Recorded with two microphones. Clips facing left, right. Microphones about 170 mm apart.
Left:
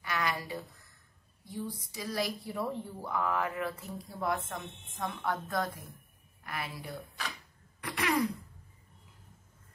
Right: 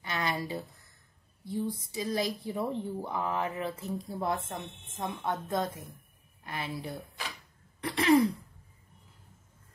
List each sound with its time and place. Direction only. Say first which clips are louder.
0.0 s a sound: right 1 dB; 25° right (ahead or behind)
1.5 s speech: right 6 dB; 25° right (ahead or behind)
7.8 s throat clearing: right 4 dB; 30° right (ahead or behind)